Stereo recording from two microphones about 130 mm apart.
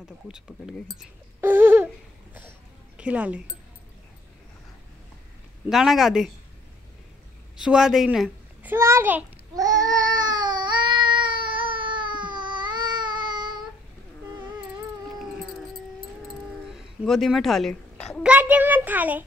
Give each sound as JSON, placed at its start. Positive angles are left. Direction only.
{"t": 1.4, "sound": "a sound", "side_deg": -15}
{"t": 3.0, "sound": "a child's voice", "side_deg": -10}
{"t": 5.7, "sound": "a woman's voice", "side_deg": 0}
{"t": 7.6, "sound": "a woman's voice", "side_deg": -5}
{"t": 8.6, "sound": "a child's voice", "side_deg": -20}
{"t": 9.6, "sound": "babbling", "side_deg": -30}
{"t": 11.4, "sound": "baby cry", "side_deg": -40}
{"t": 13.3, "sound": "child singing", "side_deg": -35}
{"t": 16.6, "sound": "a sound", "side_deg": 0}
{"t": 18.2, "sound": "a child's voice", "side_deg": -10}